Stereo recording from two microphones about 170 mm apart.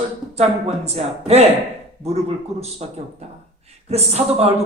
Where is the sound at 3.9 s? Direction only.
35° right (ahead or behind).